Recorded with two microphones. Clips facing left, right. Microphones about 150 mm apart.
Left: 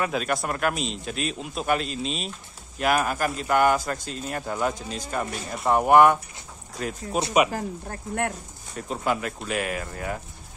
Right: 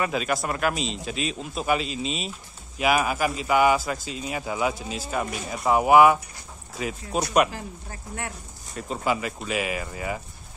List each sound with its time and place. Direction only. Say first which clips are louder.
0.0 s speech: even; centre (ahead or behind)
7.5 s speech: left 6 dB; 55° left (ahead or behind)
8.7 s speech: even; centre (ahead or behind)